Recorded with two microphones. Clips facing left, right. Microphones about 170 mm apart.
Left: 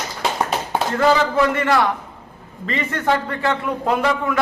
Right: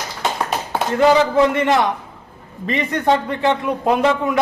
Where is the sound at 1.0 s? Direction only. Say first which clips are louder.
Right 4 dB; 20° right (ahead or behind).